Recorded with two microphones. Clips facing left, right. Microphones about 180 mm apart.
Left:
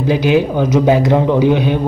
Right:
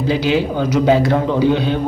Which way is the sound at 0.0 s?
15° left (ahead or behind).